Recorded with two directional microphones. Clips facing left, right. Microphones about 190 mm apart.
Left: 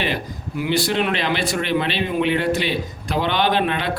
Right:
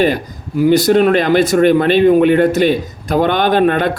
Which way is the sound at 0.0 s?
40° right (ahead or behind).